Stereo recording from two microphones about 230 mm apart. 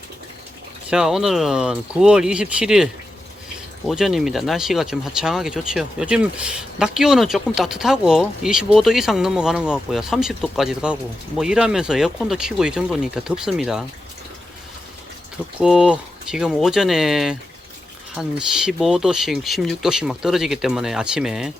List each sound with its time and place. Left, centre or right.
0.9 s speech: centre
15.6 s speech: centre